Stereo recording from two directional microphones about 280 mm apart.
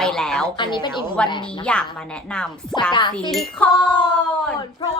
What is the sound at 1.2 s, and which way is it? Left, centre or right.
A woman's voice, centre.